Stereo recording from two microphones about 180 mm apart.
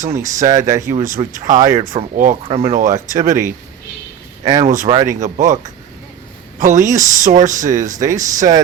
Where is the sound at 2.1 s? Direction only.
50° right (ahead or behind).